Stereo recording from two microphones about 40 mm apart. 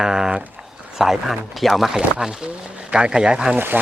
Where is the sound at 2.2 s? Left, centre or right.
Centre.